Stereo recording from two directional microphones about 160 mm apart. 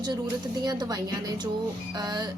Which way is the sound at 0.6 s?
25° right (ahead or behind).